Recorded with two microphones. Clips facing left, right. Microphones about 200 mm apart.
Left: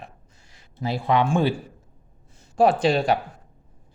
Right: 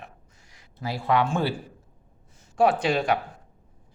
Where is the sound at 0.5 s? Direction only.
20° left (ahead or behind).